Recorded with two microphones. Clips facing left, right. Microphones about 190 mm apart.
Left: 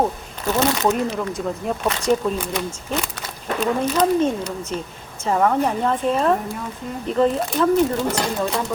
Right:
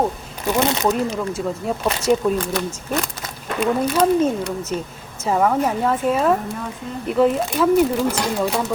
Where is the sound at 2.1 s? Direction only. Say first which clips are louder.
Right 1 dB; 5° right (ahead or behind).